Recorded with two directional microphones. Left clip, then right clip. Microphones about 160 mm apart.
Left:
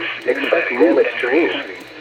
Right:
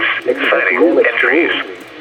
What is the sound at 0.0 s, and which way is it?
Radio, 40° right (ahead or behind).